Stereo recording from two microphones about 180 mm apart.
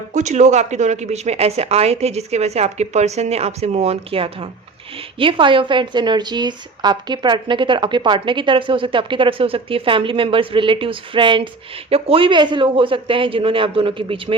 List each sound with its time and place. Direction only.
0.1 s a woman's voice: 40° right (ahead or behind)